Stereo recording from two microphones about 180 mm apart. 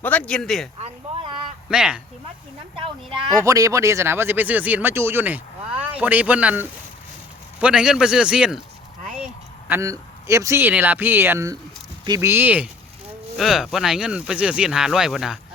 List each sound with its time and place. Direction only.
0.0 s speech: 10° left (ahead or behind)
0.8 s a sound: 30° right (ahead or behind)
1.7 s speech: 5° right (ahead or behind)
2.7 s speech: 30° right (ahead or behind)
3.4 s speech: 20° right (ahead or behind)
9.6 s speech: 15° right (ahead or behind)